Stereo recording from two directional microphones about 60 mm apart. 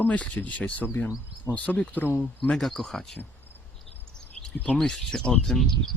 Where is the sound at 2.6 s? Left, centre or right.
Centre.